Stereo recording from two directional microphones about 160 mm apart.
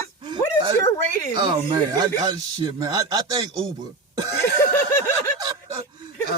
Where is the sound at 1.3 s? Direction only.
30° right (ahead or behind).